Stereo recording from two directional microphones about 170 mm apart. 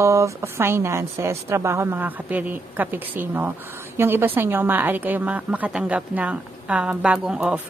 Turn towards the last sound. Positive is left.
turn(degrees=-5)  # may be behind; listen again after turning